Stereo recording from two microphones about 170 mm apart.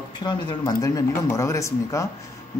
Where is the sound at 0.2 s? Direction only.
25° left (ahead or behind).